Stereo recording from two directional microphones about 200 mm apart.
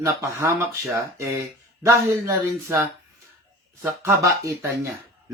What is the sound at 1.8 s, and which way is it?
Speech, 15° right (ahead or behind).